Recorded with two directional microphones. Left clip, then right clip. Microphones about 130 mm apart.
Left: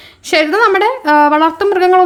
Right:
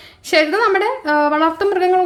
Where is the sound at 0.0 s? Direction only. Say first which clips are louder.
Left 2 dB; 25° left (ahead or behind).